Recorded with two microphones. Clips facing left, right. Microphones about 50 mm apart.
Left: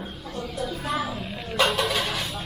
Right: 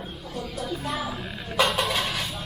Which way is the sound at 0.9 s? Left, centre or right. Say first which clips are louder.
Left 3 dB; centre.